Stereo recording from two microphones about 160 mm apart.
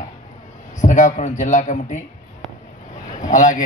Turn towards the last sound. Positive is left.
turn(degrees=55)  # may be behind; listen again after turning